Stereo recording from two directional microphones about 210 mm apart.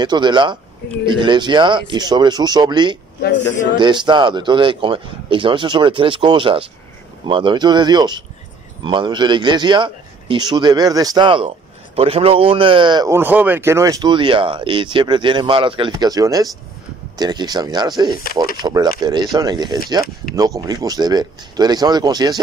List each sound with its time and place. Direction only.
0.0 s speech: 20° right (ahead or behind)